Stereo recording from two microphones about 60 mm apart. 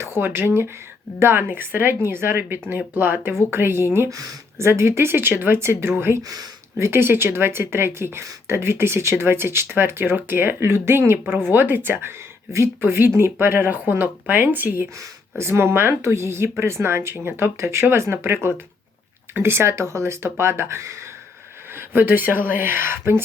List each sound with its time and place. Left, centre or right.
0.0 s speech: right
4.1 s speech: right
4.5 s speech: right
6.2 s speech: right
6.7 s speech: right
15.4 s speech: right
19.8 s speech: right
21.7 s speech: right